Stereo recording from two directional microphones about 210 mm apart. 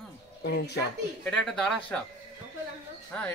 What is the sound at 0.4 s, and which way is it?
Speech, 55° left (ahead or behind).